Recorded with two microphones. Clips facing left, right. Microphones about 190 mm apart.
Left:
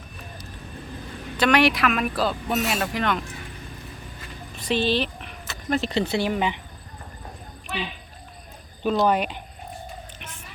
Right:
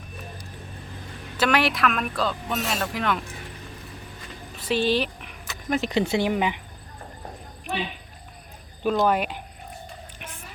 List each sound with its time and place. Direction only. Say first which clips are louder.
1.4 s speech: left 3 dB; 5° right (ahead or behind)
4.5 s speech: even; 5° right (ahead or behind)
8.8 s speech: left 1 dB; 5° right (ahead or behind)